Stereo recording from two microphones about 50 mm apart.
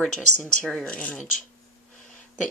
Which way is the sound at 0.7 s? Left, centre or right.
Left.